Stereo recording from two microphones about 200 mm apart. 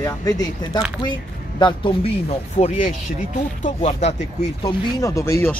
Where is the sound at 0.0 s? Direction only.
15° left (ahead or behind); by 4.7 s 35° left (ahead or behind).